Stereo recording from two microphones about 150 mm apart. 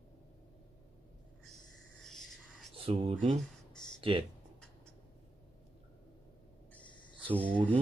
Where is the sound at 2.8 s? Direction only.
35° right (ahead or behind).